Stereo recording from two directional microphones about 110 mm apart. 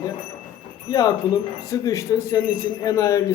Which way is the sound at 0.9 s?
35° left (ahead or behind).